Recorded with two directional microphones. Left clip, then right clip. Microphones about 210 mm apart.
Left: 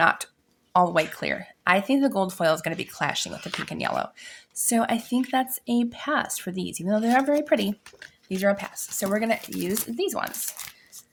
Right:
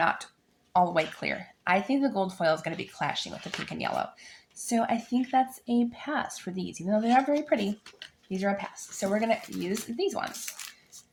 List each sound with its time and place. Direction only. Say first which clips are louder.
0.0 s speech: left 6 dB; 35° left (ahead or behind)